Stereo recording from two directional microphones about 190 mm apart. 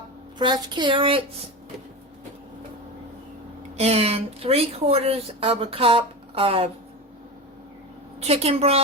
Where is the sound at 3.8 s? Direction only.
35° right (ahead or behind).